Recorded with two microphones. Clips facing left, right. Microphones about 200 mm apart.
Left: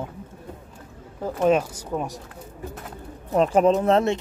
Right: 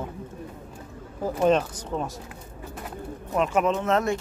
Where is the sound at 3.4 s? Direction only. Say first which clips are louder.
Left 5 dB; 35° left (ahead or behind).